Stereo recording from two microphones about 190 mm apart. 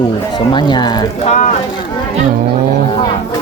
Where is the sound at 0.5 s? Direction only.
20° left (ahead or behind).